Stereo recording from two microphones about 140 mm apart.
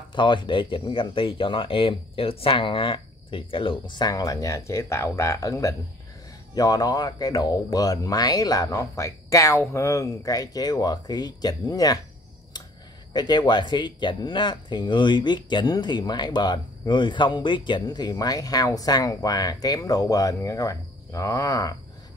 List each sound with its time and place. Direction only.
0.1 s speech: 35° left (ahead or behind)
13.1 s speech: 30° left (ahead or behind)